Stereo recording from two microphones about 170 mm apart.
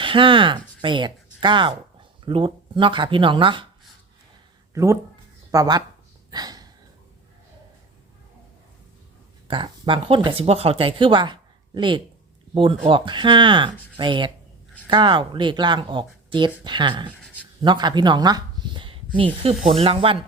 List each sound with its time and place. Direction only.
0.0 s speech: 30° right (ahead or behind)
4.7 s speech: 15° right (ahead or behind)
6.3 s a sound: 25° right (ahead or behind)
9.5 s speech: 30° right (ahead or behind)